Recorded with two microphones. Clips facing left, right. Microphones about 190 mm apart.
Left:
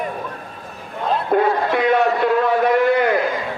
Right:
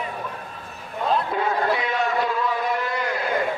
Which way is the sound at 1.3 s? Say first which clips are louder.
Left 6 dB; 55° left (ahead or behind).